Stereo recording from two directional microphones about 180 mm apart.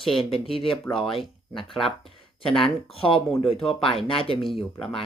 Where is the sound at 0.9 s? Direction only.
30° left (ahead or behind).